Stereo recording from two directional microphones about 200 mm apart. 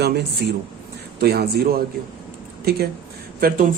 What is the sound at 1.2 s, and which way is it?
Speech, 55° right (ahead or behind).